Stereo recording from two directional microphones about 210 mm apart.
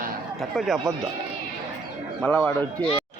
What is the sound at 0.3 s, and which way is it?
Speech, centre (ahead or behind).